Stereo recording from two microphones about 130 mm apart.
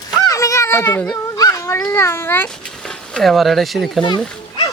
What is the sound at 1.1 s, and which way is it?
Speech, 25° left (ahead or behind).